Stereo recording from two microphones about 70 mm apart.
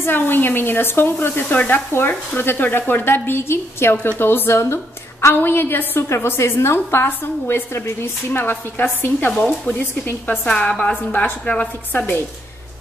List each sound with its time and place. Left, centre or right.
0.0 s a woman's voice: left
10.5 s a woman's voice: centre